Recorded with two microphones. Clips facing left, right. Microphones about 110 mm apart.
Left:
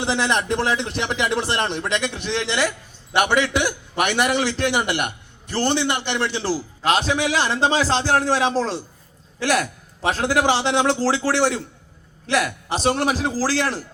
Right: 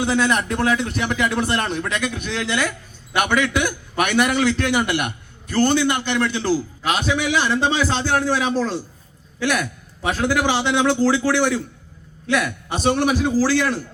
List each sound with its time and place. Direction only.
0.0 s a man's voice: 30° left (ahead or behind)